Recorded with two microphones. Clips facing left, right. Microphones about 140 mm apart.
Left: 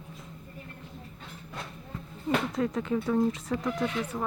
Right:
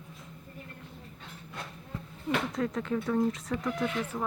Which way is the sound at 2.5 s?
5° left (ahead or behind).